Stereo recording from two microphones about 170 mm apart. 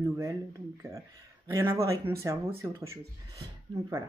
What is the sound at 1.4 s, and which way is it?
Speech, 15° right (ahead or behind).